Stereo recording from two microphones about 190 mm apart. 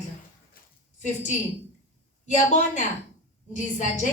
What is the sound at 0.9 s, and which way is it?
A woman's voice, 40° left (ahead or behind).